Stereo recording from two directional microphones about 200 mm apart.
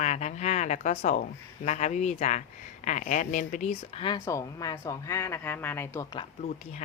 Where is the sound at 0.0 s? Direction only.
35° left (ahead or behind).